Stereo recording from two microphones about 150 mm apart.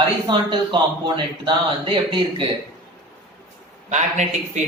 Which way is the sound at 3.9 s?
50° right (ahead or behind).